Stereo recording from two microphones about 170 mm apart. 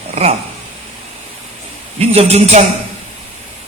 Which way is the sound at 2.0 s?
35° right (ahead or behind).